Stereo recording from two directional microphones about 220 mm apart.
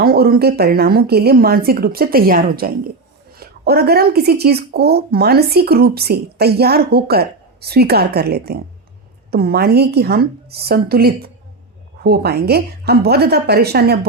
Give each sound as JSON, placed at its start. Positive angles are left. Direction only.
{"t": 0.0, "sound": "a woman's voice", "side_deg": -45}